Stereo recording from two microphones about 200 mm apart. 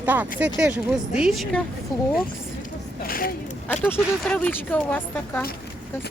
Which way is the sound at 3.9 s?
5° left (ahead or behind).